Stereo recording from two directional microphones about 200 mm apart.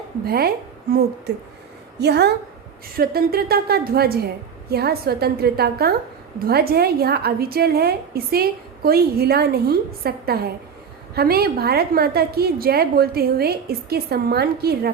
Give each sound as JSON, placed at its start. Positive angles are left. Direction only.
{"t": 0.3, "sound": "a woman's voice", "side_deg": -50}
{"t": 2.0, "sound": "a woman's voice", "side_deg": -55}